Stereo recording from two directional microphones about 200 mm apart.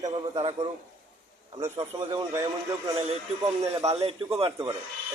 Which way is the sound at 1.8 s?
15° right (ahead or behind).